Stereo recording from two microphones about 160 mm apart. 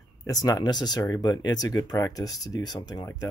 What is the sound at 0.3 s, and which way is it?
Speech, 20° left (ahead or behind).